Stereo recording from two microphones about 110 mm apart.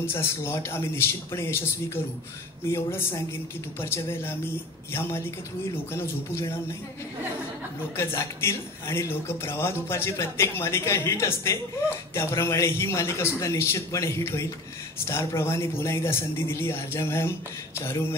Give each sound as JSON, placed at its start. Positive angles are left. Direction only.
{"t": 0.0, "sound": "speech", "side_deg": 20}
{"t": 2.7, "sound": "speech", "side_deg": 20}
{"t": 8.0, "sound": "speech", "side_deg": 20}